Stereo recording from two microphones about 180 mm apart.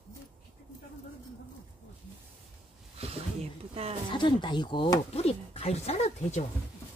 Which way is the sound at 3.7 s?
35° right (ahead or behind).